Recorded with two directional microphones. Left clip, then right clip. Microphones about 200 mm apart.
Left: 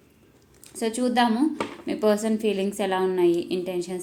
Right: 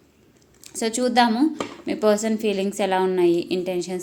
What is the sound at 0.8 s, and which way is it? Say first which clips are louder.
A woman's voice: right 4 dB; 20° right (ahead or behind).